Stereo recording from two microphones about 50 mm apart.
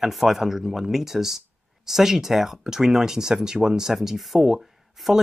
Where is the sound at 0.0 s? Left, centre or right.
Centre.